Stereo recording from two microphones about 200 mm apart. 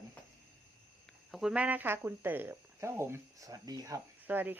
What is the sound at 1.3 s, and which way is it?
Speech, 5° right (ahead or behind).